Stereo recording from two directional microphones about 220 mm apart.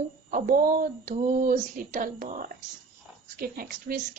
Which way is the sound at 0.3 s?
40° right (ahead or behind).